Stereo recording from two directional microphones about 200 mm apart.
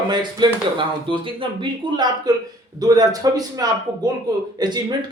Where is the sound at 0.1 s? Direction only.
20° right (ahead or behind).